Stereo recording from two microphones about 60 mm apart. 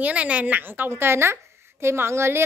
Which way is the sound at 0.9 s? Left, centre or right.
Right.